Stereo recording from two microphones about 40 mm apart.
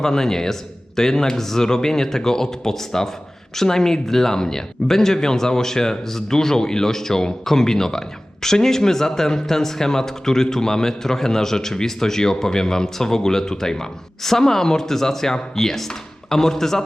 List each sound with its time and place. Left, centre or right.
0.0 s speech: centre